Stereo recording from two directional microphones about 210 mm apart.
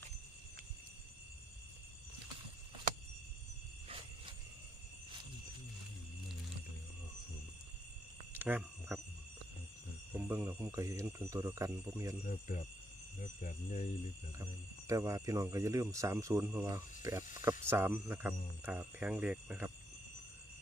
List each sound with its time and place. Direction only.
8.3 s frog: 10° right (ahead or behind)
10.1 s speech: 10° right (ahead or behind)
12.2 s speech: 40° left (ahead or behind)
14.8 s speech: 15° right (ahead or behind)